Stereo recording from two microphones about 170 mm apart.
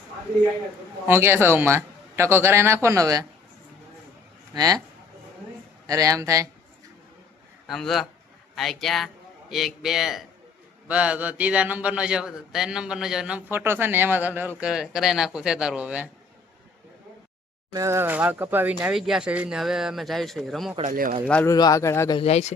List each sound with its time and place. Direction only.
1.0 s a man's voice: 15° right (ahead or behind)
4.5 s speech: 25° right (ahead or behind)
5.8 s speech: 20° right (ahead or behind)
7.7 s a man's voice: centre (ahead or behind)
17.7 s speech: 15° right (ahead or behind); by 20.7 s centre (ahead or behind)
20.8 s speech: 55° right (ahead or behind)
21.2 s speech: 10° left (ahead or behind)
21.5 s speech: 20° left (ahead or behind)
22.2 s speech: 40° left (ahead or behind)